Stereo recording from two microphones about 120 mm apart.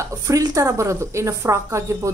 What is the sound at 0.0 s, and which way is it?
A woman's voice, 25° right (ahead or behind).